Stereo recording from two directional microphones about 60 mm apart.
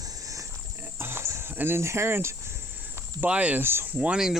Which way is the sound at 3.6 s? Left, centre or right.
Right.